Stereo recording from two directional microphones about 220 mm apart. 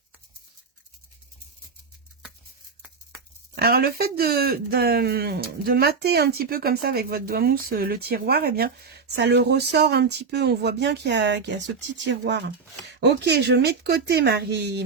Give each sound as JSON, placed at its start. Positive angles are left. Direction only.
{"t": 3.5, "sound": "speech", "side_deg": -45}